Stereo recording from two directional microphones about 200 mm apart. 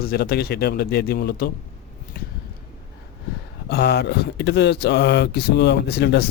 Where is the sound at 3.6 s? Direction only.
55° left (ahead or behind).